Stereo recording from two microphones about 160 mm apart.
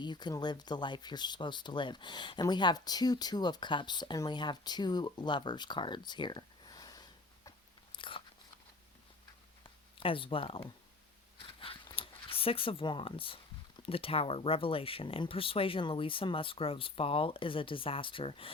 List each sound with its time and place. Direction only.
0.0 s speech: 25° left (ahead or behind)
7.9 s biting: 30° left (ahead or behind)
10.0 s speech: 35° left (ahead or behind)
11.3 s a sound: 35° left (ahead or behind)
13.8 s speech: 35° left (ahead or behind)